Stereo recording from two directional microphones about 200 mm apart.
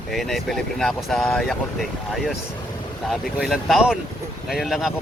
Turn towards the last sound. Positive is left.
turn(degrees=0)  # may be behind; listen again after turning